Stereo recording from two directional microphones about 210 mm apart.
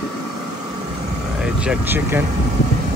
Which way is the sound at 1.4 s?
5° right (ahead or behind).